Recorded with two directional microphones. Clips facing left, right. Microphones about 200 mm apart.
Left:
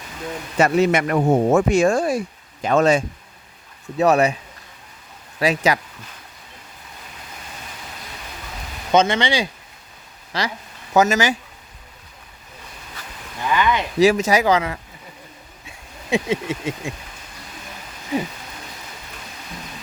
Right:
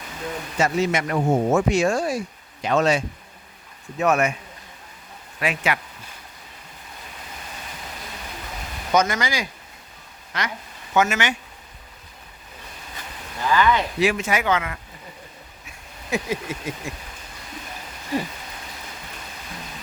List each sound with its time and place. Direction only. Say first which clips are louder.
0.6 s speech: left 5 dB; 60° left (ahead or behind)
3.9 s speech: left 4 dB; 35° left (ahead or behind)
5.4 s speech: left 6 dB; 35° left (ahead or behind)
8.9 s speech: left 4 dB; 25° left (ahead or behind)
13.5 s speech: even; 20° left (ahead or behind)
14.0 s speech: left 10 dB; 40° left (ahead or behind)
15.6 s a sound: left 4 dB; 25° left (ahead or behind)